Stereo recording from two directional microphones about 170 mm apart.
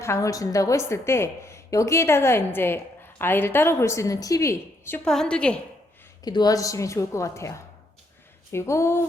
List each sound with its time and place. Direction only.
0.0 s a woman's voice: 15° left (ahead or behind)
5.0 s a woman's voice: 5° left (ahead or behind)
6.2 s a woman's voice: 25° left (ahead or behind)